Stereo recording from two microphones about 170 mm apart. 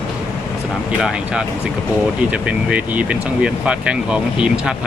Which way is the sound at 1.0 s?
5° right (ahead or behind).